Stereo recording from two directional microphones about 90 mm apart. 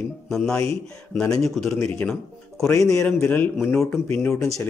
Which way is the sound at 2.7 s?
35° left (ahead or behind).